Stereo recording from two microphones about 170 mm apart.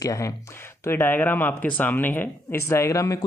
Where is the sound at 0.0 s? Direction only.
20° left (ahead or behind).